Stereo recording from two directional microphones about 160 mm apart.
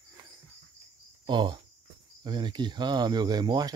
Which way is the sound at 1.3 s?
30° right (ahead or behind).